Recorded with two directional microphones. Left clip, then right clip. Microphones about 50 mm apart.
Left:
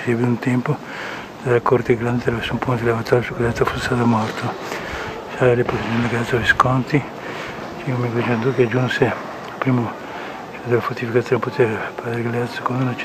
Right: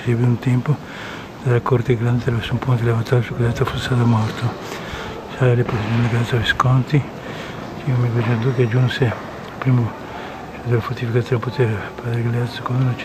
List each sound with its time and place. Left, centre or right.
0.0 s speech: left